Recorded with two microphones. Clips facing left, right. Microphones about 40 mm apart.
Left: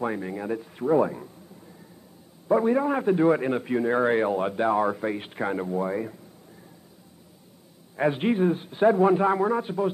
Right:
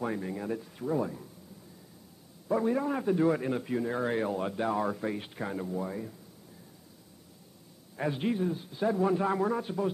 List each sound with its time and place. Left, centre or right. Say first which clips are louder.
0.0 s a man's voice: left 4 dB; left
0.8 s a man's voice: left 9 dB; left
2.4 s a man's voice: left 7 dB; left
7.9 s a man's voice: left 7 dB; left